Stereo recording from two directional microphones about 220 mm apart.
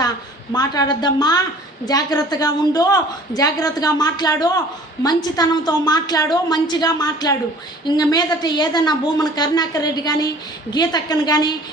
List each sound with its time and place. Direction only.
0.5 s a woman's voice: 20° left (ahead or behind)